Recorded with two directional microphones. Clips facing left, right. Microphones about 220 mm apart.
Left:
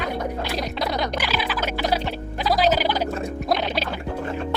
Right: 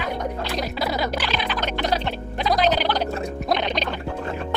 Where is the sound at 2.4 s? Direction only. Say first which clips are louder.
Even; 5° left (ahead or behind).